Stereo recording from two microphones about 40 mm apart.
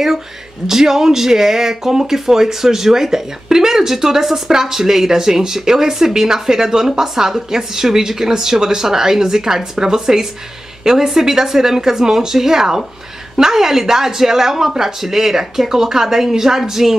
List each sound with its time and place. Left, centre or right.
0.7 s speech: centre